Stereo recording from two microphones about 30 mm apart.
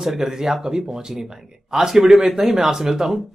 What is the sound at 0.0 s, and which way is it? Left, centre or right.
Speech, centre.